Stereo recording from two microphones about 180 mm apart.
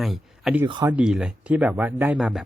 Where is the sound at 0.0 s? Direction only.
Centre (ahead or behind).